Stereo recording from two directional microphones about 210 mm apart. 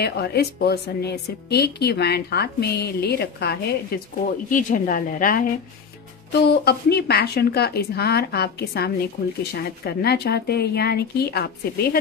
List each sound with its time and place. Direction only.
0.0 s a woman's voice: 50° left (ahead or behind)
4.5 s a woman's voice: 40° left (ahead or behind)